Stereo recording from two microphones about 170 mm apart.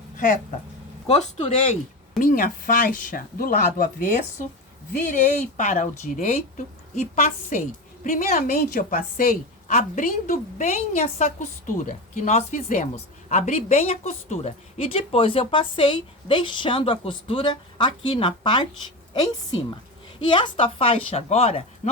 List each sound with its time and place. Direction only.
1.0 s a woman's voice: 35° left (ahead or behind)
2.1 s a woman's voice: 55° left (ahead or behind); by 21.6 s 35° left (ahead or behind)